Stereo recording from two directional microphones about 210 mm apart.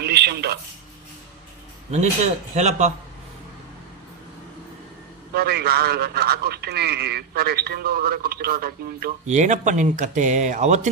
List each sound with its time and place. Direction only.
0.0 s a sound: 50° right (ahead or behind)
1.9 s speech: 30° right (ahead or behind)
5.3 s a man's voice: 45° right (ahead or behind)
9.2 s speech: 35° right (ahead or behind)